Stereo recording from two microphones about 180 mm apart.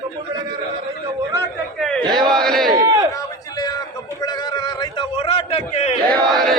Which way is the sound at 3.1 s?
20° left (ahead or behind).